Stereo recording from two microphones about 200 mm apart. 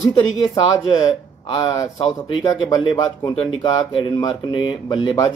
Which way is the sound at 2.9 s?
20° left (ahead or behind).